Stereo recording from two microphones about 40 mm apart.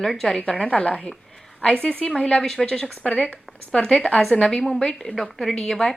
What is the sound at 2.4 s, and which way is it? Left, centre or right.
Speech, centre.